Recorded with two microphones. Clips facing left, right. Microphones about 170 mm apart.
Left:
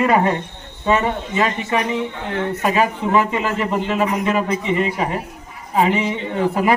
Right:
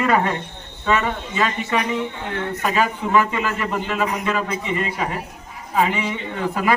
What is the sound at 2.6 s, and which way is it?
A man's voice, 20° left (ahead or behind).